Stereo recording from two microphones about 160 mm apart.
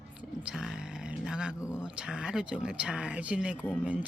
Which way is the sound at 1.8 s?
5° right (ahead or behind).